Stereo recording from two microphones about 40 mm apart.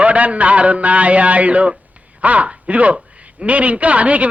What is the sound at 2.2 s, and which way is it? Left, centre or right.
A man's voice, right.